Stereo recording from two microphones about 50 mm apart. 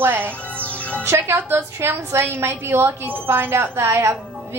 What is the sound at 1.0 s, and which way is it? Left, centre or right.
A woman's voice, right.